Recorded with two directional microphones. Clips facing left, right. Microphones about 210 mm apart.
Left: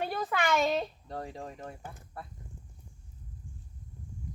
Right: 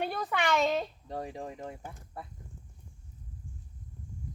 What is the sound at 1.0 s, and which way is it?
Speech, 15° right (ahead or behind).